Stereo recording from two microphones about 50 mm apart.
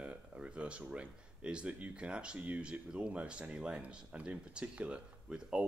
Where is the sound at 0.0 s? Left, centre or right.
Right.